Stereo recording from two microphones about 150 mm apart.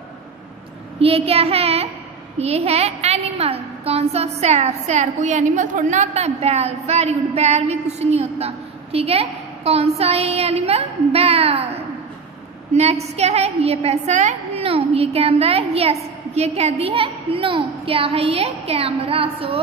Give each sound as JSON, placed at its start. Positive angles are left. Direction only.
{"t": 0.9, "sound": "a woman's voice", "side_deg": -40}